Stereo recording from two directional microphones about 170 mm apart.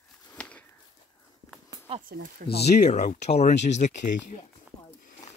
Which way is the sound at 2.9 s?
45° left (ahead or behind).